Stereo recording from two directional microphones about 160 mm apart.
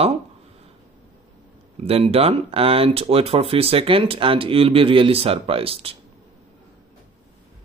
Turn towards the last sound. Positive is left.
turn(degrees=-35)  # may be behind; listen again after turning